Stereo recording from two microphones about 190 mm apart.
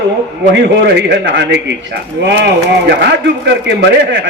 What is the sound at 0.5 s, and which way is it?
A man's voice, 65° right (ahead or behind).